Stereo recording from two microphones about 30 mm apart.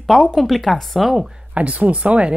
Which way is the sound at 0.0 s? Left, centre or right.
Centre.